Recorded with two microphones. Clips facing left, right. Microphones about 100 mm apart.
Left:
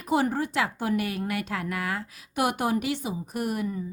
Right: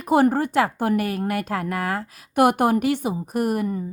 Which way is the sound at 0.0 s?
55° right (ahead or behind).